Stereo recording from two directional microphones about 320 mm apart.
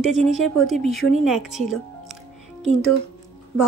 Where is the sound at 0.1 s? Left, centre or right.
Centre.